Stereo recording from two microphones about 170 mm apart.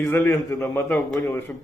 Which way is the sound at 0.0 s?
10° left (ahead or behind).